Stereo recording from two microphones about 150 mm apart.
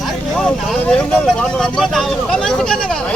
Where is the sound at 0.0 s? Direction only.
Centre (ahead or behind).